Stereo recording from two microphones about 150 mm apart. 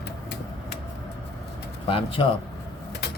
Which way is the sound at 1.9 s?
35° left (ahead or behind).